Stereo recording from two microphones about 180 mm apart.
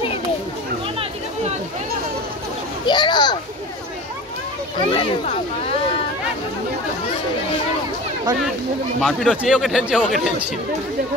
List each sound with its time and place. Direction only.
2.9 s a sound: 25° left (ahead or behind)
4.7 s a child's voice: 25° left (ahead or behind)
9.0 s speech: centre (ahead or behind)